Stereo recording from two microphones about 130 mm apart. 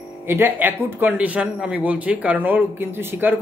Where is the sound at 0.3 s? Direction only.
15° right (ahead or behind).